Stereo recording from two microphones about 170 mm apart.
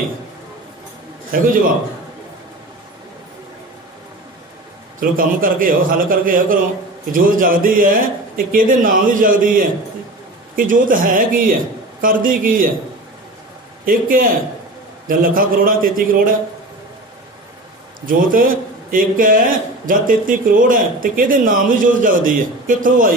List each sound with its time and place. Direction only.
1.3 s speech: 55° right (ahead or behind)
5.1 s speech: 55° right (ahead or behind)
13.8 s speech: 55° right (ahead or behind)
18.0 s a man's voice: 55° right (ahead or behind)